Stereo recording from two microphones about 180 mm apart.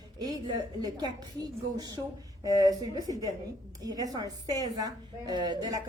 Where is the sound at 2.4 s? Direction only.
20° right (ahead or behind).